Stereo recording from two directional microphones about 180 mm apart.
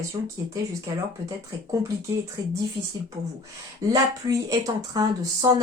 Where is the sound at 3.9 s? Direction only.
20° right (ahead or behind).